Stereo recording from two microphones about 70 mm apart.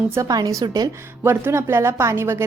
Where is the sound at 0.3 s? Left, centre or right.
Right.